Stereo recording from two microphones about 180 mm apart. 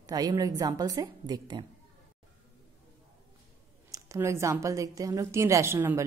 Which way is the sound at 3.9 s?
15° right (ahead or behind).